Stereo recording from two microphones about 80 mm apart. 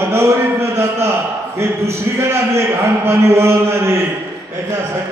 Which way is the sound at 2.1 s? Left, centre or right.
Right.